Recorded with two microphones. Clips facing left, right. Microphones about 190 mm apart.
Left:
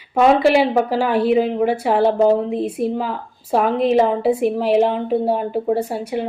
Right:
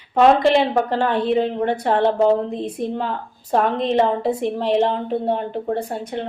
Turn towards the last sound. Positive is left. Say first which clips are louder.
# left 4 dB
turn(degrees=5)  # may be behind; listen again after turning